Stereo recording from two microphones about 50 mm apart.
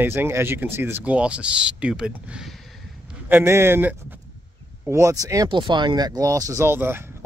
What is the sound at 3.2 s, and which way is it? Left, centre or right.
Speech, right.